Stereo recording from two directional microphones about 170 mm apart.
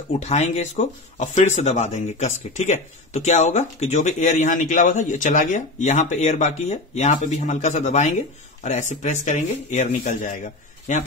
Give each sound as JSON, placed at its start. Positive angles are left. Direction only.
{"t": 0.2, "sound": "speech", "side_deg": 40}